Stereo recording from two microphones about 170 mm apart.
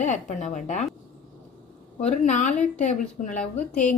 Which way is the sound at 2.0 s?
45° left (ahead or behind).